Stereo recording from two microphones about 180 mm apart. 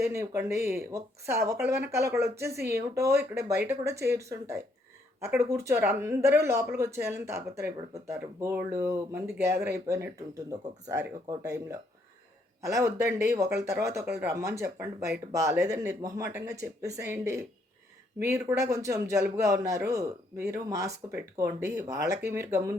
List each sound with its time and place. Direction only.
0.1 s speech: 15° right (ahead or behind)